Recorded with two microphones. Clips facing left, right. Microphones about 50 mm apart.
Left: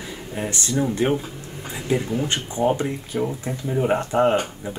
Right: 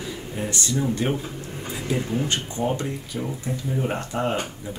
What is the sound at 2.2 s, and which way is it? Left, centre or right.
Speech, left.